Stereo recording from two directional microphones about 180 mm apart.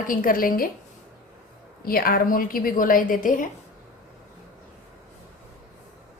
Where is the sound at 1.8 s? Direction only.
55° left (ahead or behind).